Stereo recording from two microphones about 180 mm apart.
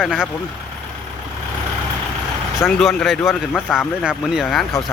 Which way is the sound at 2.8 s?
Centre (ahead or behind).